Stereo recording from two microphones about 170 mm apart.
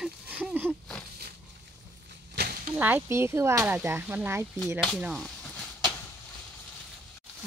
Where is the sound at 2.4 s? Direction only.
80° right.